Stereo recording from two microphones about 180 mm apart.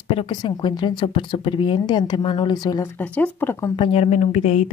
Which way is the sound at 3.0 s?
10° left (ahead or behind).